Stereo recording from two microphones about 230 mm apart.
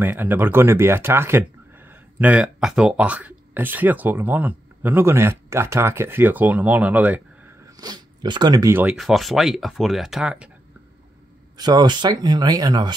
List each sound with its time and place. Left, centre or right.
0.0 s speech: centre
11.5 s speech: centre